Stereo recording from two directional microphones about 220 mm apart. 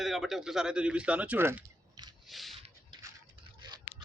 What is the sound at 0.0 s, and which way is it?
Speech, centre (ahead or behind).